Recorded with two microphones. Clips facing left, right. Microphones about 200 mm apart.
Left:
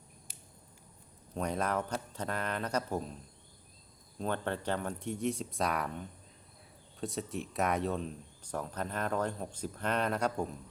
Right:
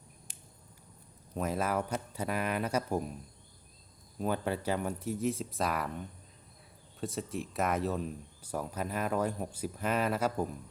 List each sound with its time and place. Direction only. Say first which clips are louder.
1.3 s speech: right 1 dB; 5° right (ahead or behind)
4.2 s speech: right 2 dB; 10° right (ahead or behind)